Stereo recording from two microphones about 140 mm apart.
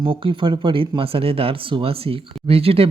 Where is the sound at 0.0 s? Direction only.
40° right (ahead or behind).